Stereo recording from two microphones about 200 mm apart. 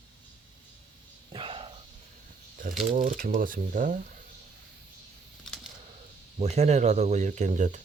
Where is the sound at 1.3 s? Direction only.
25° right (ahead or behind).